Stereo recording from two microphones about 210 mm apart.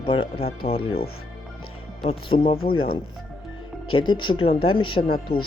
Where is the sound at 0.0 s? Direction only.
25° left (ahead or behind).